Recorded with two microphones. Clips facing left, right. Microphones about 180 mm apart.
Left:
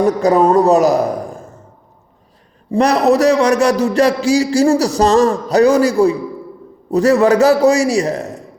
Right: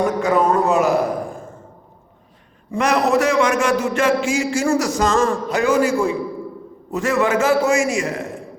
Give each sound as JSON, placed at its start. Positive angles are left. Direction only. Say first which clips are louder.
{"t": 0.0, "sound": "a man's voice", "louder": "left 5 dB", "side_deg": 40}
{"t": 2.7, "sound": "a man's voice", "louder": "left 5 dB", "side_deg": 35}